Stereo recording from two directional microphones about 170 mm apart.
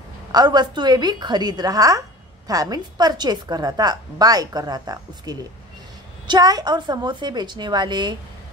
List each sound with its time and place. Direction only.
0.3 s a woman's voice: 25° right (ahead or behind)